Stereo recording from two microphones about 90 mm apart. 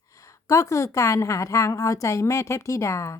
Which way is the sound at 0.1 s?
35° left (ahead or behind).